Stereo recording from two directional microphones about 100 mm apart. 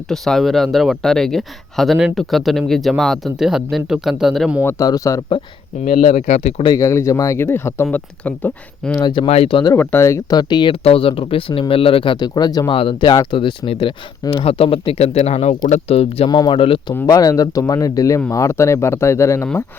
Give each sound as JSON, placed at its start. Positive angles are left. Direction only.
{"t": 0.1, "sound": "speech", "side_deg": 5}
{"t": 4.8, "sound": "speech", "side_deg": 35}
{"t": 6.7, "sound": "speech", "side_deg": 30}
{"t": 9.2, "sound": "speech", "side_deg": 80}
{"t": 9.7, "sound": "speech", "side_deg": 20}
{"t": 10.3, "sound": "speech", "side_deg": 50}
{"t": 10.8, "sound": "speech", "side_deg": 65}
{"t": 12.1, "sound": "speech", "side_deg": 45}
{"t": 12.7, "sound": "speech", "side_deg": 60}
{"t": 16.3, "sound": "speech", "side_deg": 45}
{"t": 16.6, "sound": "speech", "side_deg": 60}
{"t": 17.1, "sound": "speech", "side_deg": 35}